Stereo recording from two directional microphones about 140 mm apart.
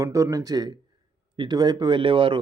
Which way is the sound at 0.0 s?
20° right (ahead or behind).